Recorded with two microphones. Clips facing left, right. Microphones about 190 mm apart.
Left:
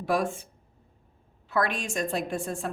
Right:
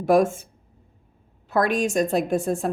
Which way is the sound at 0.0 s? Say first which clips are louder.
Right 8 dB; 45° right (ahead or behind).